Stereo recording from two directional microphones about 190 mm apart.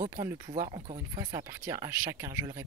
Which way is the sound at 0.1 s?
15° right (ahead or behind).